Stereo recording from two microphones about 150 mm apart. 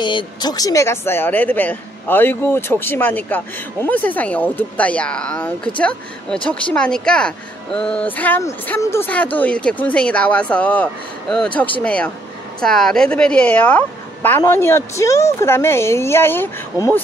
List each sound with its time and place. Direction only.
0.0 s a woman's voice: 30° left (ahead or behind); by 16.4 s 15° left (ahead or behind)